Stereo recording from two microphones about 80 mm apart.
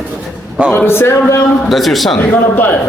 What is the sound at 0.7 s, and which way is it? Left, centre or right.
Speech, left.